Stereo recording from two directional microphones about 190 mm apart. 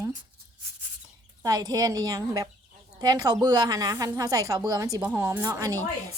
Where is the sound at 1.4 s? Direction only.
20° right (ahead or behind).